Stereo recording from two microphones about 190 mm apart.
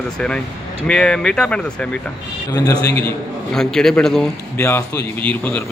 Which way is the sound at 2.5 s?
20° left (ahead or behind).